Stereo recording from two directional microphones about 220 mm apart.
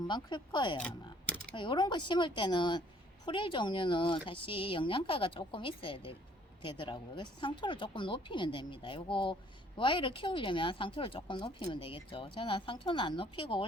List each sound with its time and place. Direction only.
0.1 s speech: 20° left (ahead or behind)
0.8 s a sound: 5° left (ahead or behind)
1.5 s speech: 20° left (ahead or behind)